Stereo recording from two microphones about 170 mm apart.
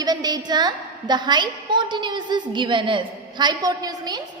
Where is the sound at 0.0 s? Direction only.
25° right (ahead or behind).